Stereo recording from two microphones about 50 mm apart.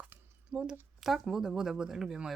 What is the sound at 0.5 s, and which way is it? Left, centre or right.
Speech, centre.